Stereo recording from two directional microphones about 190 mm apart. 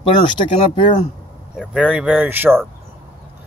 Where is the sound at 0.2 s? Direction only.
25° left (ahead or behind).